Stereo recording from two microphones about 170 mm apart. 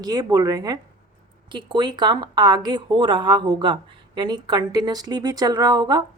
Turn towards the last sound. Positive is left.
turn(degrees=-25)  # may be behind; listen again after turning